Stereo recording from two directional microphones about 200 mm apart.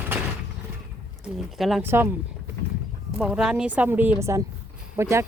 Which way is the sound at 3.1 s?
5° right (ahead or behind).